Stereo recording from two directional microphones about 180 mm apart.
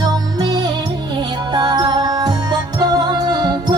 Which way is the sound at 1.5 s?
25° right (ahead or behind).